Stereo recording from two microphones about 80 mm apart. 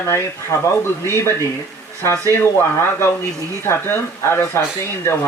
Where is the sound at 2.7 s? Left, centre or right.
Left.